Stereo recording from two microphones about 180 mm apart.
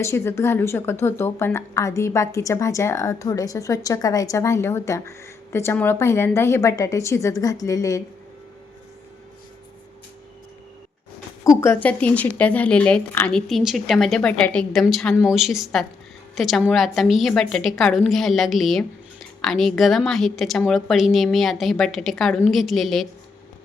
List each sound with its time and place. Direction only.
0.0 s speech: 15° left (ahead or behind)
11.4 s a woman's voice: 15° left (ahead or behind)